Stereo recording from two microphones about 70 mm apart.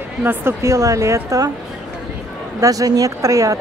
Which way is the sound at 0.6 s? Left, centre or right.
Right.